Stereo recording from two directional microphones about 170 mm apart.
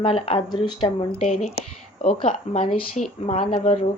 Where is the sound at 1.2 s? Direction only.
45° left (ahead or behind).